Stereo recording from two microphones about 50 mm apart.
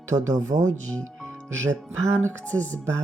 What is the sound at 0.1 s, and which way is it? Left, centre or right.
Speech, right.